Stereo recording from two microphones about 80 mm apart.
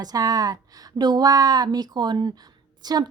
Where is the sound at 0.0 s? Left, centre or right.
Right.